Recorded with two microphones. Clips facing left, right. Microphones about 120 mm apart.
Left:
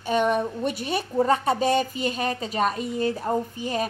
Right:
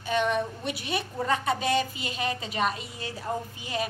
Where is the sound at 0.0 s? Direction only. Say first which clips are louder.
Left 4 dB; 45° left (ahead or behind).